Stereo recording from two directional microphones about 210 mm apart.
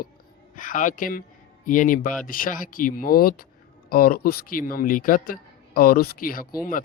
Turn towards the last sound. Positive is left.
turn(degrees=40)  # may be behind; listen again after turning